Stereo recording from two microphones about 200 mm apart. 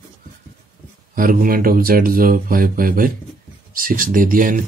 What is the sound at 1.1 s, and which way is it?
Speech, 45° right (ahead or behind).